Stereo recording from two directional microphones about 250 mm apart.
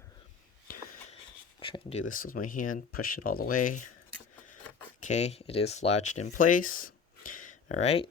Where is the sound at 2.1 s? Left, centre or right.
Left.